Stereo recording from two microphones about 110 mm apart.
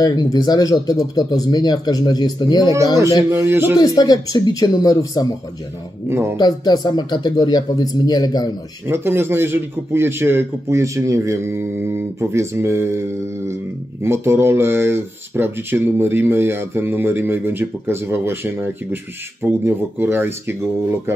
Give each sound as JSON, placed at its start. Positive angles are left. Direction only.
{"t": 0.0, "sound": "speech", "side_deg": 35}
{"t": 3.3, "sound": "speech", "side_deg": -20}
{"t": 3.7, "sound": "speech", "side_deg": 35}
{"t": 6.0, "sound": "speech", "side_deg": -20}
{"t": 6.3, "sound": "speech", "side_deg": 40}
{"t": 8.8, "sound": "speech", "side_deg": -20}
{"t": 14.0, "sound": "speech", "side_deg": -25}